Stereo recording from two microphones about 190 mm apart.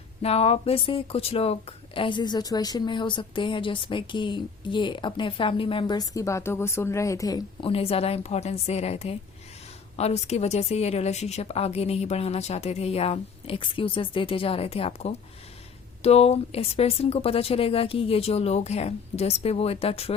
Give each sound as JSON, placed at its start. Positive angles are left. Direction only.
{"t": 0.2, "sound": "speech", "side_deg": 35}
{"t": 7.7, "sound": "speech", "side_deg": 30}